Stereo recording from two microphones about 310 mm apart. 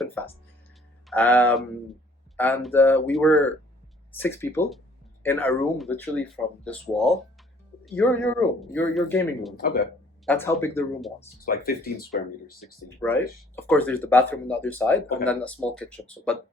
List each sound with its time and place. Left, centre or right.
0.0 s speech: centre
9.6 s speech: left
10.2 s speech: centre
11.4 s speech: left
13.0 s speech: centre